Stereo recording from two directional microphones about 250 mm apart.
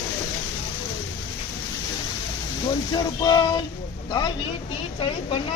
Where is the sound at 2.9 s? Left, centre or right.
Centre.